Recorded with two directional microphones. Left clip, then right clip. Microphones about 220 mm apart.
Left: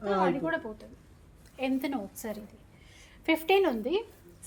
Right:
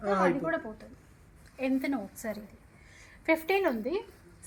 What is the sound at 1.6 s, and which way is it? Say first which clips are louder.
A woman's voice: even; 40° left (ahead or behind).